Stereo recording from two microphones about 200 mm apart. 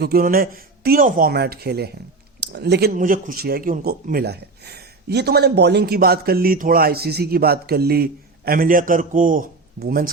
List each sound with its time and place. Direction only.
0.0 s speech: 45° right (ahead or behind)
2.9 s speech: 45° right (ahead or behind)